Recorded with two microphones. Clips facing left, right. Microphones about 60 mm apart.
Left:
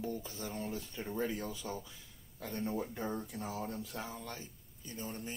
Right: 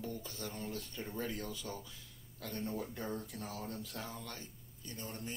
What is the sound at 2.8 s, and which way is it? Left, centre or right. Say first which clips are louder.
A man's voice: left 3 dB; centre.